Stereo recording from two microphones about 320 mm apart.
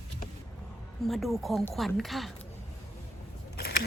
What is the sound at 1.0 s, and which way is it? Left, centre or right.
Speech, centre.